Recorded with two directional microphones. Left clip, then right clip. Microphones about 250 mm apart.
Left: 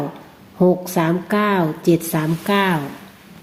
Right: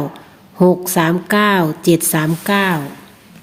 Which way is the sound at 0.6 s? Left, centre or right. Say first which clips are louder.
Right 3 dB; right.